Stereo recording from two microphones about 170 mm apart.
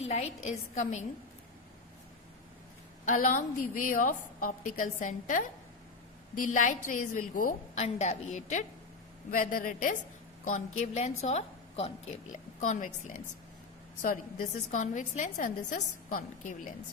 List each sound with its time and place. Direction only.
0.1 s a woman's voice: 40° left (ahead or behind)
3.1 s a woman's voice: 50° left (ahead or behind)
9.3 s a woman's voice: 55° left (ahead or behind)